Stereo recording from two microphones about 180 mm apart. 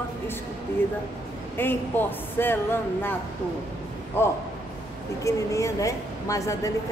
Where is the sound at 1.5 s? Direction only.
10° left (ahead or behind).